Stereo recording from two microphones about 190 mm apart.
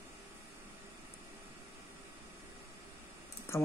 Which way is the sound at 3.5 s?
15° left (ahead or behind).